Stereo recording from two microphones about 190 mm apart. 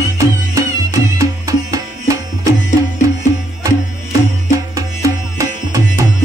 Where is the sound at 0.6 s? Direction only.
15° right (ahead or behind).